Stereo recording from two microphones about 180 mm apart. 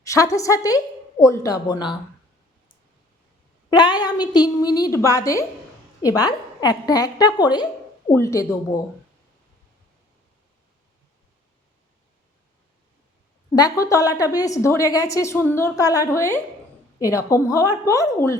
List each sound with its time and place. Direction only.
0.0 s a woman's voice: 20° left (ahead or behind)
3.7 s a woman's voice: 25° left (ahead or behind)
13.6 s a woman's voice: 20° left (ahead or behind)